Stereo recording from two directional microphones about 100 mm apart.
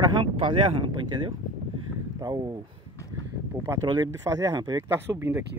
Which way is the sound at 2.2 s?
40° right (ahead or behind).